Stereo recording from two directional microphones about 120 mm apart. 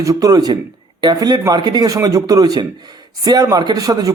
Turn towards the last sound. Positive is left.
turn(degrees=-30)  # may be behind; listen again after turning